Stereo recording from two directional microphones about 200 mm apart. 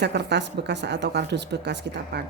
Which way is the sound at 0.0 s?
60° right (ahead or behind).